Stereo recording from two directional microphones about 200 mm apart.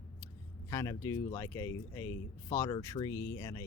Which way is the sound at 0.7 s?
15° left (ahead or behind).